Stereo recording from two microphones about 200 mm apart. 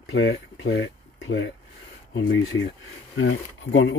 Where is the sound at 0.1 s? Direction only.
55° left (ahead or behind).